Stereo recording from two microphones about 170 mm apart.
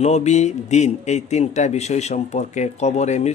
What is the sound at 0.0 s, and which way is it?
A man's voice, 40° left (ahead or behind).